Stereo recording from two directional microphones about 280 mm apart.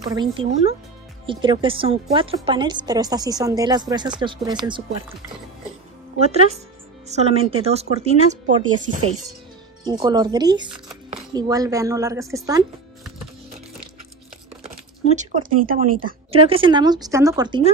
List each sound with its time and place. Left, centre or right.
0.0 s a woman's voice: centre
6.1 s speech: right
9.8 s a woman's voice: centre
14.7 s speech: right
16.3 s a woman's voice: centre